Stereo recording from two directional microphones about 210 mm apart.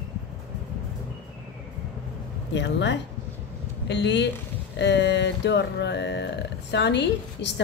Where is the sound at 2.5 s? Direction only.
55° left (ahead or behind).